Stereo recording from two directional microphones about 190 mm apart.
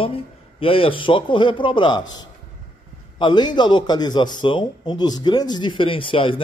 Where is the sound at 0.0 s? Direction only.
30° left (ahead or behind).